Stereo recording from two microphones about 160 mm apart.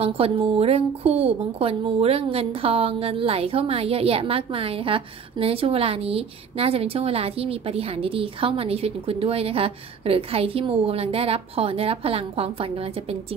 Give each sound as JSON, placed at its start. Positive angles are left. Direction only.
{"t": 0.0, "sound": "a woman's voice", "side_deg": -40}